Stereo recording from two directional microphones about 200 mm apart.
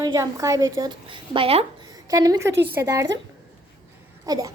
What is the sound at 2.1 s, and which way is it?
Speech, 15° right (ahead or behind).